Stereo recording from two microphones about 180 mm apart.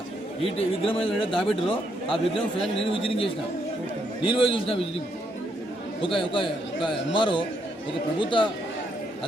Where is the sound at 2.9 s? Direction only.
30° left (ahead or behind).